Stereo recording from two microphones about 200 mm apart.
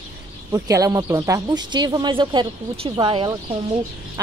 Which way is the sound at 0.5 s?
15° right (ahead or behind).